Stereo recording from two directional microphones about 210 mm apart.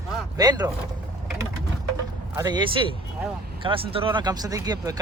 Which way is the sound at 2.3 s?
20° right (ahead or behind).